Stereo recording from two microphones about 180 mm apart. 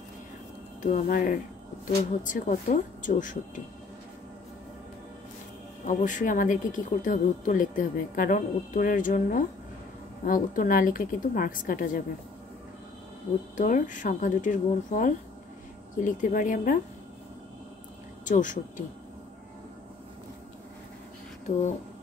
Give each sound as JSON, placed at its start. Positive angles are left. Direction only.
{"t": 0.8, "sound": "speech", "side_deg": 50}
{"t": 5.9, "sound": "speech", "side_deg": 45}
{"t": 13.6, "sound": "speech", "side_deg": 45}
{"t": 18.2, "sound": "speech", "side_deg": 45}